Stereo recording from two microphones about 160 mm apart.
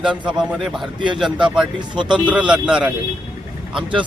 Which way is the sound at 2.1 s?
10° right (ahead or behind).